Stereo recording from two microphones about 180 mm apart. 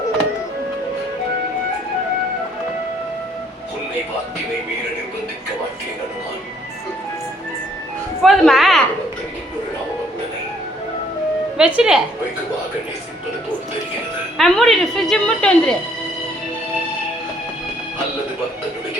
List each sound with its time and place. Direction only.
8.2 s a woman's voice: centre (ahead or behind)
11.5 s speech: 5° right (ahead or behind)
14.3 s speech: 5° left (ahead or behind)